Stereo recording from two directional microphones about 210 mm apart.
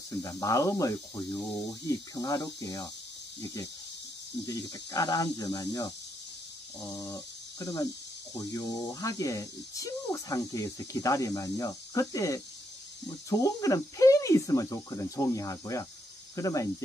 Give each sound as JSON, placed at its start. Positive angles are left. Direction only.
{"t": 0.2, "sound": "speech", "side_deg": 15}
{"t": 4.5, "sound": "speech", "side_deg": 15}
{"t": 7.0, "sound": "speech", "side_deg": 15}